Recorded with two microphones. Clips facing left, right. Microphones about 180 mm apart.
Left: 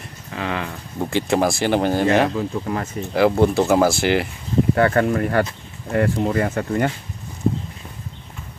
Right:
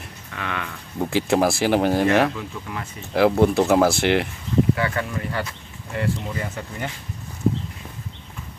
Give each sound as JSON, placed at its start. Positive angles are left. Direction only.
{"t": 0.3, "sound": "speech", "side_deg": 30}
{"t": 0.9, "sound": "speech", "side_deg": 0}
{"t": 2.2, "sound": "speech", "side_deg": 40}
{"t": 3.1, "sound": "speech", "side_deg": 0}
{"t": 4.7, "sound": "speech", "side_deg": 50}